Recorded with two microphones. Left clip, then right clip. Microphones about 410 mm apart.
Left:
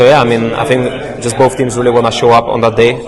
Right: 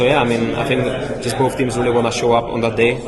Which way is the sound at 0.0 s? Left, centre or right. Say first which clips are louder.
Left 8 dB; left.